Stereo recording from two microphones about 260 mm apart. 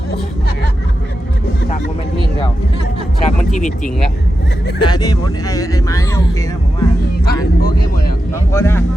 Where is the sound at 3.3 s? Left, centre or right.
Left.